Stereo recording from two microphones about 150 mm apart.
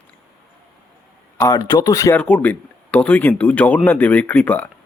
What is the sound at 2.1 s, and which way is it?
Speech, 10° left (ahead or behind).